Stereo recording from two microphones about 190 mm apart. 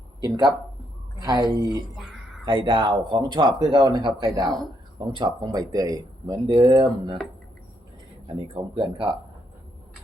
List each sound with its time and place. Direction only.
0.3 s speech: 20° right (ahead or behind)
8.4 s speech: 30° right (ahead or behind)